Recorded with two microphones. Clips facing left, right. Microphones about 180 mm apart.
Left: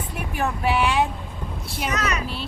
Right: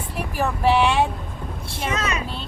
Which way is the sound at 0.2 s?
Centre (ahead or behind).